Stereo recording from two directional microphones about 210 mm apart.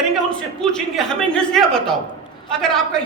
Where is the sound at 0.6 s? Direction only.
Centre (ahead or behind).